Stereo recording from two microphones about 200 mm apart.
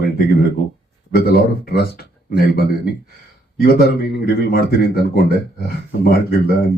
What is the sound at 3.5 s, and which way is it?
Speech, 50° left (ahead or behind).